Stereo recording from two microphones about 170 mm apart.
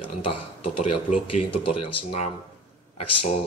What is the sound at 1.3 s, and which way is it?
Speech, 35° left (ahead or behind).